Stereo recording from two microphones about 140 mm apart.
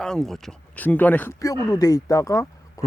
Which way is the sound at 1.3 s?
25° left (ahead or behind).